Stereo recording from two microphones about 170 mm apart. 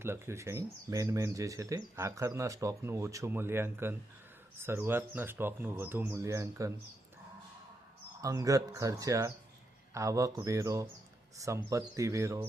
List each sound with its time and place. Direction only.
0.0 s speech: 15° right (ahead or behind)
8.2 s speech: 20° right (ahead or behind)